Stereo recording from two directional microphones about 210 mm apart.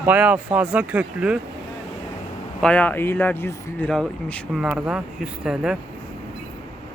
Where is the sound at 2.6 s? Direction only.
5° left (ahead or behind).